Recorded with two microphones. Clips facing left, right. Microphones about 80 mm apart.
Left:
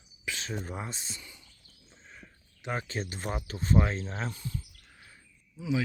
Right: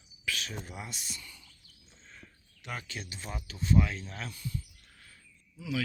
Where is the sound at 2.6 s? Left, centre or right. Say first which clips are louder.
Left 7 dB; left.